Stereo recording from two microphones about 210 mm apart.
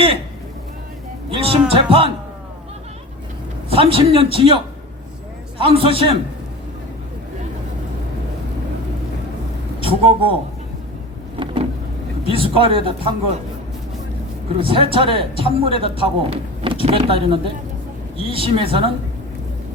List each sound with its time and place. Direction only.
1.3 s a man's voice: 25° right (ahead or behind)
3.7 s a man's voice: 25° right (ahead or behind)
9.8 s a man's voice: 25° right (ahead or behind)
12.2 s a man's voice: 25° right (ahead or behind)
14.6 s a man's voice: 25° right (ahead or behind)